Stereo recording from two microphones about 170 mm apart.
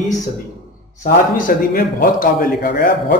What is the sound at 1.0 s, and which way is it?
A man's voice, 55° left (ahead or behind).